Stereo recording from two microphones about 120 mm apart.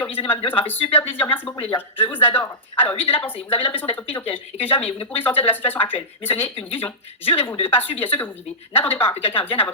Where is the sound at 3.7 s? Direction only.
15° left (ahead or behind).